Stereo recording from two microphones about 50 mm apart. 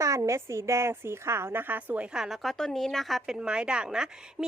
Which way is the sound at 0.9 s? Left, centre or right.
Right.